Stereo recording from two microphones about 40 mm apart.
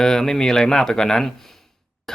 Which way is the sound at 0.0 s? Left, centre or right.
Centre.